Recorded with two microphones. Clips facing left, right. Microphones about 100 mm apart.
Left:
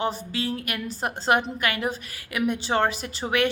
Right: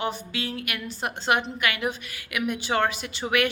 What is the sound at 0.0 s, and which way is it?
A woman's voice, 35° left (ahead or behind).